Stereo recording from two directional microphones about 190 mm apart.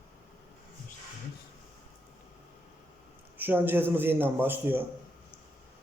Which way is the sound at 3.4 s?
10° right (ahead or behind).